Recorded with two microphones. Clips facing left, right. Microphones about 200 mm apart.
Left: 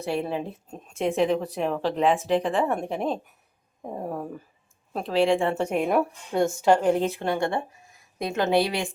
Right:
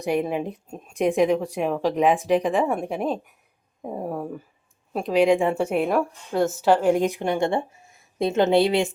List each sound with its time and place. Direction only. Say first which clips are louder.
0.0 s a woman's voice: right 4 dB; 15° right (ahead or behind)